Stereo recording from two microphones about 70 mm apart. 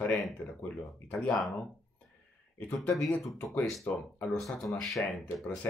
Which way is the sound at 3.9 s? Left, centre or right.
Left.